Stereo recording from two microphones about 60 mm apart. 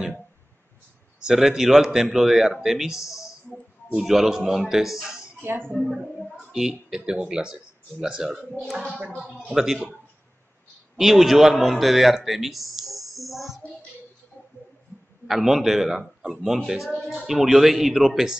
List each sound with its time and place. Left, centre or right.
1.2 s speech: centre
3.0 s speech: left
4.0 s a man's voice: centre
5.4 s speech: right
5.8 s a man's voice: centre
11.0 s a man's voice: centre
15.2 s a man's voice: centre